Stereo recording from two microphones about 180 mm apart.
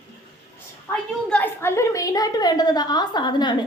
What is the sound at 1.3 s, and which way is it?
A woman's voice, 10° left (ahead or behind).